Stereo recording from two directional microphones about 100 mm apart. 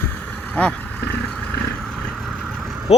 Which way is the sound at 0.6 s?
20° left (ahead or behind).